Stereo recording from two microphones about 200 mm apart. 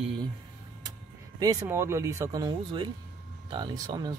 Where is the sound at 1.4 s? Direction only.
20° right (ahead or behind).